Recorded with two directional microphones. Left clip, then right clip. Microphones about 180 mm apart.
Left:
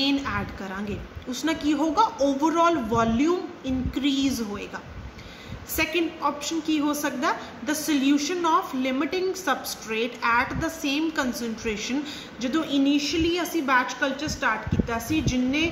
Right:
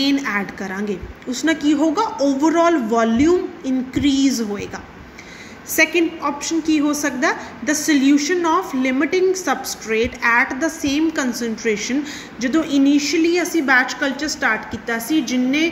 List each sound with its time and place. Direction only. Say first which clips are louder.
0.0 s a woman's voice: right 6 dB; 15° right (ahead or behind)
5.8 s a woman's voice: right 9 dB; 10° right (ahead or behind)